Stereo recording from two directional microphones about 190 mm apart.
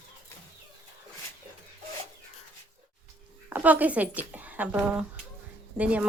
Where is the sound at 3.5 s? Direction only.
10° right (ahead or behind).